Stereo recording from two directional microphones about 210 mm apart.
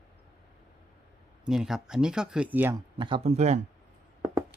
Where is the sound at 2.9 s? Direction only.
20° right (ahead or behind).